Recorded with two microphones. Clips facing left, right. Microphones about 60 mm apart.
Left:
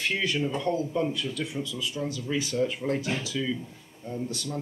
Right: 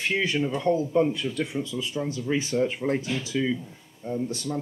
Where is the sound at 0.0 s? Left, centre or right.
Centre.